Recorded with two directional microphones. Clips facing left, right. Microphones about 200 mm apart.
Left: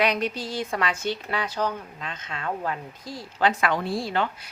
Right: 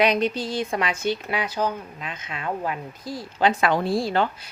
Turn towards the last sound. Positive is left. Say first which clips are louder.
# right 4 dB
turn(degrees=-35)  # may be behind; listen again after turning